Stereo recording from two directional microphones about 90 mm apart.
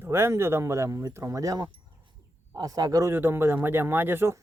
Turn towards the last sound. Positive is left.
turn(degrees=-25)  # may be behind; listen again after turning